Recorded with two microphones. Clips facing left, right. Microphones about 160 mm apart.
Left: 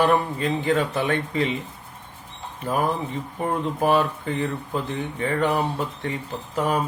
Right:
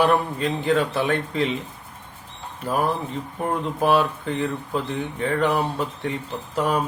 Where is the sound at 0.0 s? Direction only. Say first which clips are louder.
Even; centre (ahead or behind).